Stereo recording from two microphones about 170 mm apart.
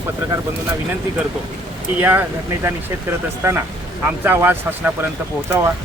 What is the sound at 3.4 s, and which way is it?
Speech, 15° right (ahead or behind).